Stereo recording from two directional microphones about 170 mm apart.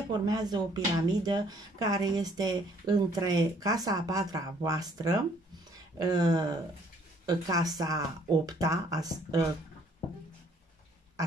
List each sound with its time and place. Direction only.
0.2 s speech: 25° right (ahead or behind)